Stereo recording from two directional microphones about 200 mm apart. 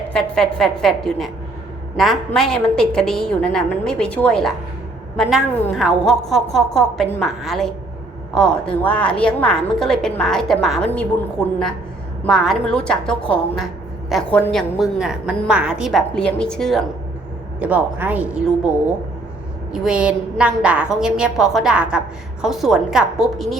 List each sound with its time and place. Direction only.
0.1 s a woman's voice: centre (ahead or behind)
12.2 s a woman's voice: centre (ahead or behind)
19.7 s a woman's voice: 5° right (ahead or behind)